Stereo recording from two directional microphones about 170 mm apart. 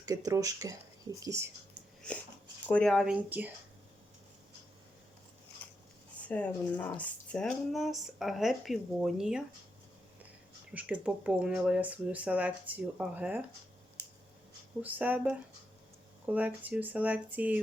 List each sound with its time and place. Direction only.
0.0 s speech: 20° right (ahead or behind)
2.0 s biting: 5° left (ahead or behind)
2.6 s speech: 5° left (ahead or behind)
6.2 s speech: 10° left (ahead or behind)
10.8 s speech: 10° right (ahead or behind)
14.8 s speech: 10° right (ahead or behind)